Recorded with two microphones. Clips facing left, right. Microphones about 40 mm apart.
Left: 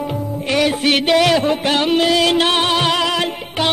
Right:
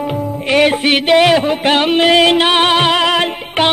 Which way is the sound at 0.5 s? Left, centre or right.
Right.